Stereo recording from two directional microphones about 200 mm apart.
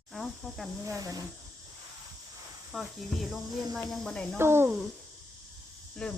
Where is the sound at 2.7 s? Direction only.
Centre (ahead or behind).